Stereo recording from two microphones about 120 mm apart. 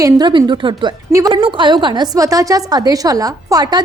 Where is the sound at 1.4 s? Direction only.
45° right (ahead or behind).